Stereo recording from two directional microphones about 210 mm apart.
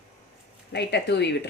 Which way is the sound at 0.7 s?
55° left (ahead or behind).